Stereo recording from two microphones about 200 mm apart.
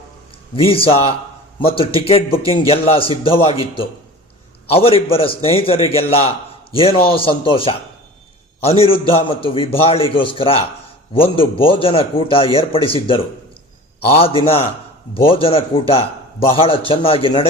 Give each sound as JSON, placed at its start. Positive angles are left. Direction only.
{"t": 0.5, "sound": "a man's voice", "side_deg": 25}
{"t": 8.8, "sound": "a man's voice", "side_deg": 25}